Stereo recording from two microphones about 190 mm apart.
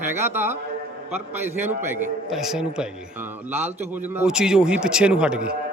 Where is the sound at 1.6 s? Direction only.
10° right (ahead or behind).